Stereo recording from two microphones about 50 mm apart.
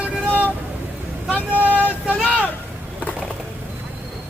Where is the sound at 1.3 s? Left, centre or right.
Left.